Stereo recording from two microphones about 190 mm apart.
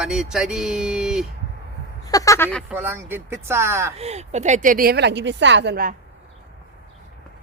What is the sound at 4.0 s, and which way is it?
A woman's voice, 35° right (ahead or behind).